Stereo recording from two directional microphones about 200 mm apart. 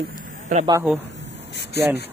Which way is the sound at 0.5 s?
40° right (ahead or behind).